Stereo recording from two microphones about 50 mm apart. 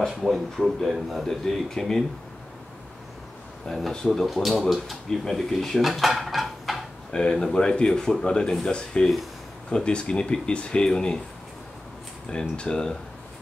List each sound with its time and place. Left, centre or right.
0.1 s speech: centre
1.2 s speech: centre
3.9 s speech: centre
7.1 s speech: centre
12.3 s speech: centre